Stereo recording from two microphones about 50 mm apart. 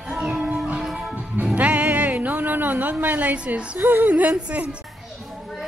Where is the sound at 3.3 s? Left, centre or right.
Right.